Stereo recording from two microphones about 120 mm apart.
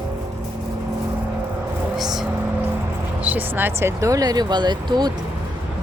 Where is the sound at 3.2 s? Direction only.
15° right (ahead or behind).